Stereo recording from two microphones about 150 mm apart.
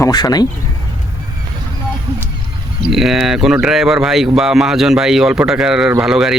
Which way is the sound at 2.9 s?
Centre (ahead or behind).